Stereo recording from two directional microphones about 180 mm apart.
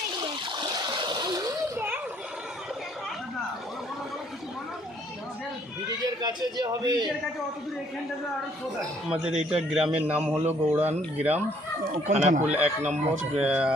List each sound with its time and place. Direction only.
0.2 s splash: 25° right (ahead or behind)
6.0 s a man's voice: 20° right (ahead or behind)
8.8 s a man's voice: 5° right (ahead or behind)
12.0 s speech: 40° right (ahead or behind)
13.3 s speech: 5° right (ahead or behind)